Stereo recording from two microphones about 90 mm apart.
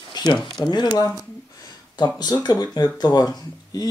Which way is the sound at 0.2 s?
55° left (ahead or behind).